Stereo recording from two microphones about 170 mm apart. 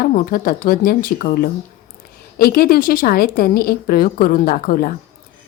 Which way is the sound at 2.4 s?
60° left (ahead or behind).